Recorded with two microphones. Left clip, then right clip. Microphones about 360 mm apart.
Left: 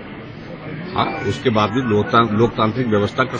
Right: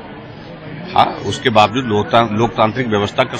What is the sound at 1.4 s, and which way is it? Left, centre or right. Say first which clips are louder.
A man's voice: right 7 dB; centre.